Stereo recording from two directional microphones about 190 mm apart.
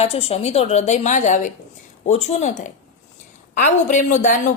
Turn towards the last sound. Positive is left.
turn(degrees=40)  # may be behind; listen again after turning